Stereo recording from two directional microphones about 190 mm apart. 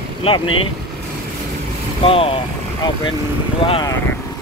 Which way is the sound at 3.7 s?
25° left (ahead or behind).